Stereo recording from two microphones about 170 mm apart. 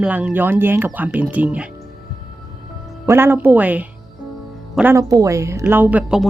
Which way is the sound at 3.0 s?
15° right (ahead or behind).